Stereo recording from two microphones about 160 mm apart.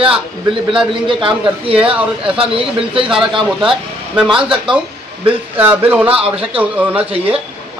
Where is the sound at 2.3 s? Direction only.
35° right (ahead or behind).